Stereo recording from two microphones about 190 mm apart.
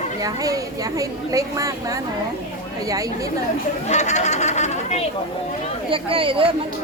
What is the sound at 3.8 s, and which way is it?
Speech, 40° left (ahead or behind).